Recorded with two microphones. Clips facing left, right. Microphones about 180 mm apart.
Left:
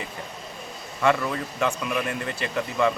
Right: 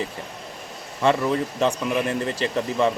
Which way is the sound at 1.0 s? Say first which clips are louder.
Right 3 dB; 30° right (ahead or behind).